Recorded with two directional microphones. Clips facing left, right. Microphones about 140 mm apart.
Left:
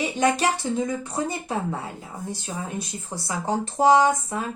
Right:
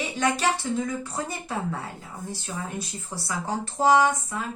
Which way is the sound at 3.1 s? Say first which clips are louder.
Left 3 dB; 20° left (ahead or behind).